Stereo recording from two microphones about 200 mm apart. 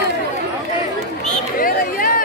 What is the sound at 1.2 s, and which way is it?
Chatter, 40° left (ahead or behind).